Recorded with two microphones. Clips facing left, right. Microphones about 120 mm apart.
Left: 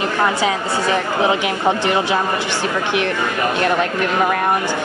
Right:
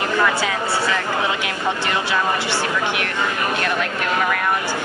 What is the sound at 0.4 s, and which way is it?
A woman's voice, 20° left (ahead or behind).